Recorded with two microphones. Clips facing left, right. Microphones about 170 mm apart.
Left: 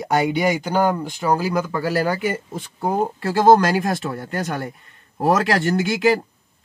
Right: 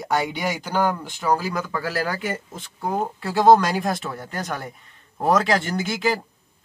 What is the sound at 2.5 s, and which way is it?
Speech, 45° left (ahead or behind).